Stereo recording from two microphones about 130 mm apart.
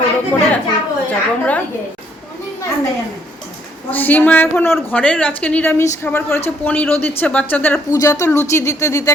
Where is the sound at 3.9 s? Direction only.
15° left (ahead or behind).